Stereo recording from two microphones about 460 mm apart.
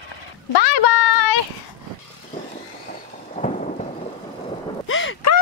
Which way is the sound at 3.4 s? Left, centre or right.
Centre.